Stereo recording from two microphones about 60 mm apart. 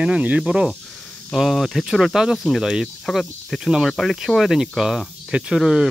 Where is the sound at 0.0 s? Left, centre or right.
Right.